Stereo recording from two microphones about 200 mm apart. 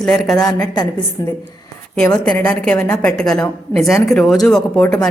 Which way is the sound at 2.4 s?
5° left (ahead or behind).